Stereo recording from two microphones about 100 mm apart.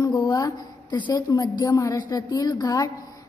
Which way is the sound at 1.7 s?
35° left (ahead or behind).